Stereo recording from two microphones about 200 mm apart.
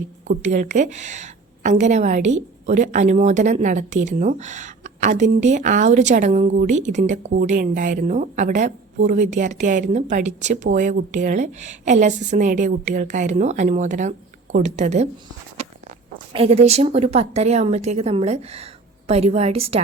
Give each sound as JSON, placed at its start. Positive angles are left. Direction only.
{"t": 0.4, "sound": "a woman's voice", "side_deg": -35}
{"t": 16.1, "sound": "a woman's voice", "side_deg": -25}